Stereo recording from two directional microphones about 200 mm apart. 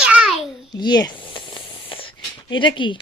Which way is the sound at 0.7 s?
20° left (ahead or behind).